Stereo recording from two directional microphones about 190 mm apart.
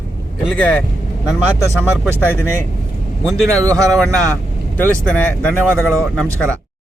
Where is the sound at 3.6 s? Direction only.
15° right (ahead or behind).